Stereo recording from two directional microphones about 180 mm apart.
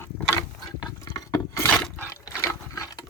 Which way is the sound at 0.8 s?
20° left (ahead or behind).